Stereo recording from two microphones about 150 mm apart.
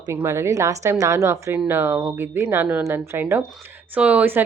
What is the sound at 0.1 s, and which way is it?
A woman's voice, 20° right (ahead or behind).